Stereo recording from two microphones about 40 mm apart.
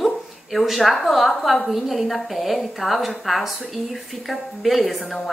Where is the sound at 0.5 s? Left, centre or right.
Centre.